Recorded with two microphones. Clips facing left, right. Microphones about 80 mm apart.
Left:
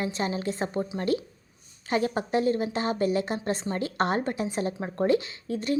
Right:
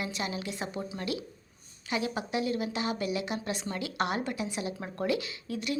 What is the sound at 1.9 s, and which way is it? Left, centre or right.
A woman's voice, left.